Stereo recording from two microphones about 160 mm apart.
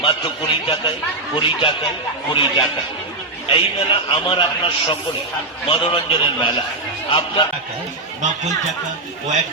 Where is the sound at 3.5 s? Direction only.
30° left (ahead or behind).